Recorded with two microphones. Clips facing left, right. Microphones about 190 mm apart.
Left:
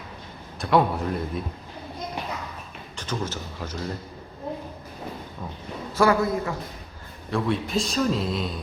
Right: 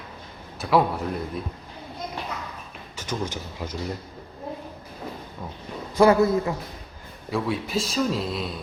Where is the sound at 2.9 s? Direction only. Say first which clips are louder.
Right 1 dB; 10° right (ahead or behind).